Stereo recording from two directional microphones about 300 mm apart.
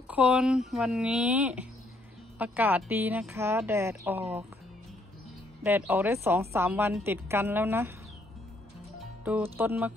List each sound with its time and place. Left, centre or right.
0.1 s a woman's voice: centre
5.6 s a woman's voice: centre
9.2 s speech: centre